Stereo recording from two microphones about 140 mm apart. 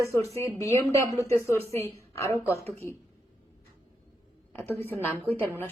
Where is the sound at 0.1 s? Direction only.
20° left (ahead or behind).